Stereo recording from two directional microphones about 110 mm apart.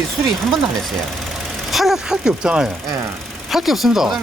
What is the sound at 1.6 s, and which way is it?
Speech, centre (ahead or behind).